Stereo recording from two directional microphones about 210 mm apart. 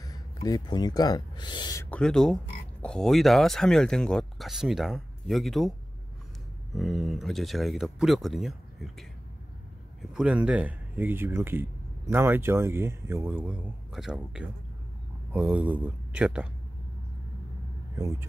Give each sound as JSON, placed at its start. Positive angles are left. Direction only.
{"t": 0.0, "sound": "speech", "side_deg": 15}
{"t": 10.1, "sound": "speech", "side_deg": -5}